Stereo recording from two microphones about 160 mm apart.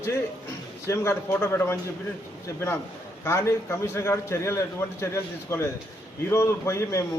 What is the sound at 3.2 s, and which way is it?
A man's voice, 15° left (ahead or behind).